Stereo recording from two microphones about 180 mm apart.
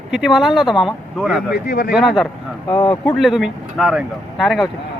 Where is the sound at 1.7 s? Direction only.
60° left (ahead or behind).